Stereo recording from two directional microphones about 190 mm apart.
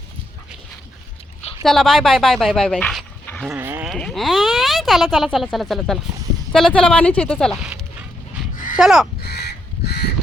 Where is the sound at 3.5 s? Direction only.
10° right (ahead or behind).